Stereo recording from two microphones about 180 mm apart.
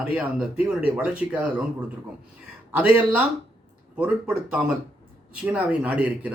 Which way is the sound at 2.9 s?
10° right (ahead or behind).